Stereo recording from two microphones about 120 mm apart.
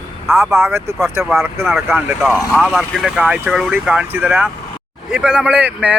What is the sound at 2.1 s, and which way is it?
Speech, 15° right (ahead or behind).